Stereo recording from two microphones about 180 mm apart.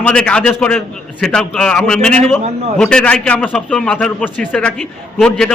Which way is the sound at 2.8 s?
5° left (ahead or behind).